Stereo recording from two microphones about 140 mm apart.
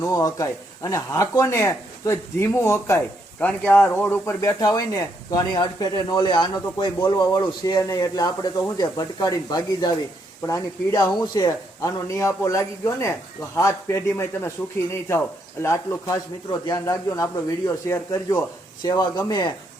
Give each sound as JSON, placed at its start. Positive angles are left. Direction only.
{"t": 0.0, "sound": "speech", "side_deg": 20}
{"t": 15.6, "sound": "speech", "side_deg": 20}